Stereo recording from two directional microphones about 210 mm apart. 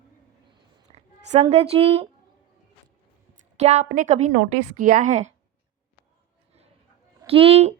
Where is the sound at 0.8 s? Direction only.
30° right (ahead or behind).